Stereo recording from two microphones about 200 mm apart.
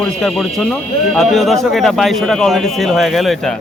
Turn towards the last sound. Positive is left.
turn(degrees=0)  # may be behind; listen again after turning